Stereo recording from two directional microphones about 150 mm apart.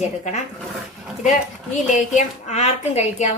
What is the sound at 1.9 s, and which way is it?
A woman's voice, 50° left (ahead or behind).